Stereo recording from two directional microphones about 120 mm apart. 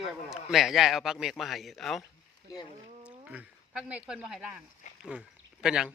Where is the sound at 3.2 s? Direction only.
10° right (ahead or behind).